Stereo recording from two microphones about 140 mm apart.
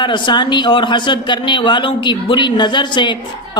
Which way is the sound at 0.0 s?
35° left (ahead or behind).